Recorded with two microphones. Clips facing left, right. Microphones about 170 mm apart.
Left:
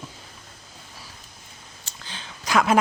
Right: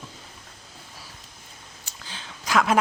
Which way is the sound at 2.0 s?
5° right (ahead or behind).